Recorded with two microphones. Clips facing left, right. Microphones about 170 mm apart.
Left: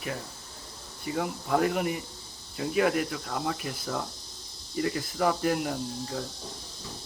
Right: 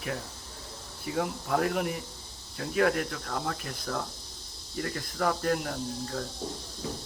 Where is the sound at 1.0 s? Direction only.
Centre (ahead or behind).